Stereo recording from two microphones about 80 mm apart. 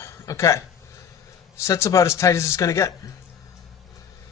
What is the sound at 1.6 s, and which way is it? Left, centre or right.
Speech, left.